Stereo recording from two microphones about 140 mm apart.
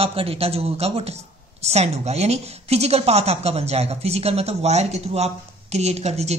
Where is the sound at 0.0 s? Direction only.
45° right (ahead or behind).